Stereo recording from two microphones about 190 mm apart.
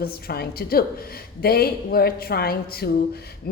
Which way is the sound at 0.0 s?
55° left (ahead or behind).